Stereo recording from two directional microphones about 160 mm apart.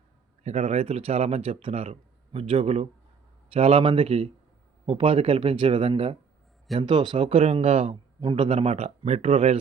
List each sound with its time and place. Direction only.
0.4 s a man's voice: 40° right (ahead or behind)